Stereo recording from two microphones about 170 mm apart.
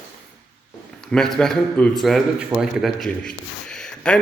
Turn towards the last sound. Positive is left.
turn(degrees=5)  # may be behind; listen again after turning